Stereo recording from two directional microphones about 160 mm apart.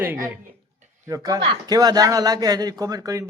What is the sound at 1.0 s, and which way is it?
Speech, 25° right (ahead or behind).